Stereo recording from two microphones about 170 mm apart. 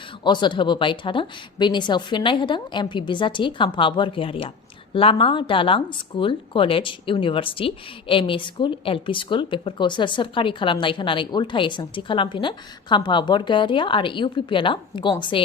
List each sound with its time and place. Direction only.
0.3 s speech: 25° left (ahead or behind)